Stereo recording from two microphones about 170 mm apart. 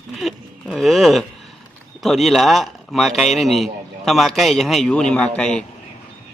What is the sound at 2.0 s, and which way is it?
A man's voice, centre (ahead or behind).